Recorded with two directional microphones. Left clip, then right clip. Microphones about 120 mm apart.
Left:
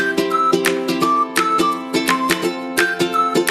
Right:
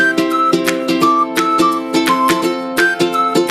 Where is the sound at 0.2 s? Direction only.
5° left (ahead or behind).